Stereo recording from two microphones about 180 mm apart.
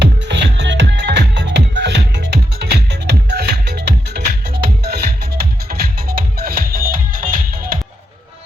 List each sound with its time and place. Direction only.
0.0 s music: 75° right (ahead or behind); by 7.8 s 50° right (ahead or behind)